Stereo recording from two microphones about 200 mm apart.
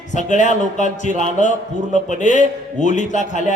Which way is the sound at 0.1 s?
40° left (ahead or behind).